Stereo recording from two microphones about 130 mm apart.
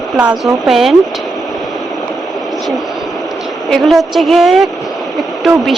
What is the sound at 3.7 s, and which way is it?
A woman's voice, centre (ahead or behind).